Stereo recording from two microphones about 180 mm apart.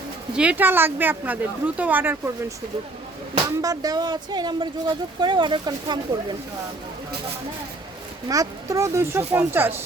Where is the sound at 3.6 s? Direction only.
20° right (ahead or behind).